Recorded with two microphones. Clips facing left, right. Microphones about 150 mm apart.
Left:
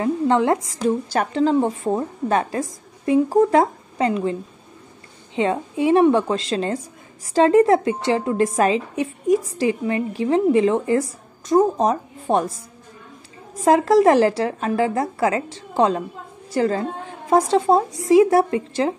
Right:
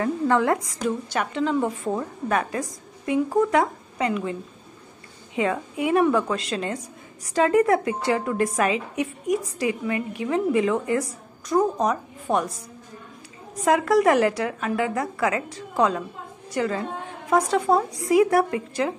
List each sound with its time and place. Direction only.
0.0 s a woman's voice: 25° left (ahead or behind)
13.7 s a woman's voice: 30° left (ahead or behind)